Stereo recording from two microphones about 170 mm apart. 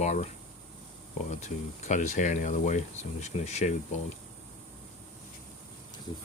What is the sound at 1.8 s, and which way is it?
Speech, 45° left (ahead or behind).